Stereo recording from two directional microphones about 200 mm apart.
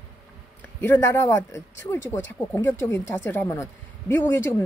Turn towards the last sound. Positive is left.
turn(degrees=10)  # may be behind; listen again after turning